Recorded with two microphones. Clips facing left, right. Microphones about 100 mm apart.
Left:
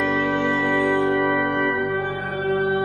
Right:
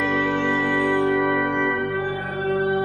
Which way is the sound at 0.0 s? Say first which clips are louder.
Left 1 dB; centre (ahead or behind).